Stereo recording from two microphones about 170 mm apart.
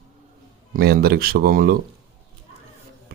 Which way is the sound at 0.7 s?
60° right (ahead or behind).